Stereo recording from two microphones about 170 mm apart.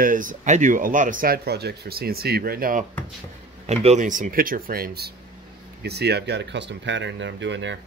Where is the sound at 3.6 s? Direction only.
40° right (ahead or behind); by 7.7 s 90° right.